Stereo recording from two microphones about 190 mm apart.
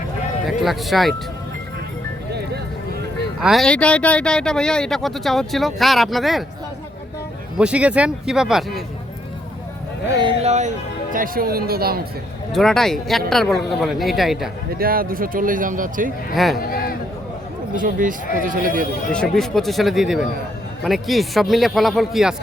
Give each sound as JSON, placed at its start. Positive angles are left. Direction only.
{"t": 0.6, "sound": "speech", "side_deg": 0}
{"t": 3.4, "sound": "speech", "side_deg": 0}
{"t": 7.6, "sound": "speech", "side_deg": -5}
{"t": 10.1, "sound": "speech", "side_deg": -20}
{"t": 10.4, "sound": "speech", "side_deg": -35}
{"t": 11.1, "sound": "speech", "side_deg": -50}
{"t": 12.5, "sound": "speech", "side_deg": 0}
{"t": 14.8, "sound": "speech", "side_deg": -50}
{"t": 16.3, "sound": "speech", "side_deg": 0}
{"t": 16.6, "sound": "a man's voice", "side_deg": 50}
{"t": 17.7, "sound": "speech", "side_deg": -45}
{"t": 19.1, "sound": "speech", "side_deg": 5}